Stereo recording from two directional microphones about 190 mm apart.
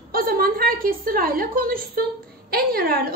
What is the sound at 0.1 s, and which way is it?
A woman's voice, 50° right (ahead or behind).